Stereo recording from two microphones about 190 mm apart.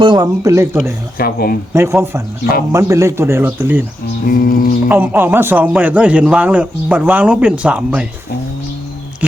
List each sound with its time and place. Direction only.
0.0 s a man's voice: 20° right (ahead or behind)
1.2 s music: 50° left (ahead or behind)
1.7 s a man's voice: 15° right (ahead or behind)
4.3 s music: 45° left (ahead or behind)
4.9 s a man's voice: 10° right (ahead or behind)